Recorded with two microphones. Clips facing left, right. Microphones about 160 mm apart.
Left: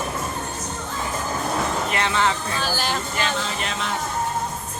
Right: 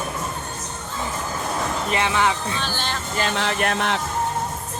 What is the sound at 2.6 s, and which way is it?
Speech, 5° left (ahead or behind).